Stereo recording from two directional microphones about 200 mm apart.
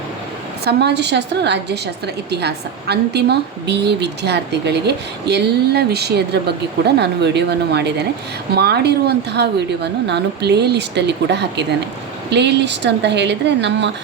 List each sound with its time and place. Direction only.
0.6 s a woman's voice: 55° right (ahead or behind)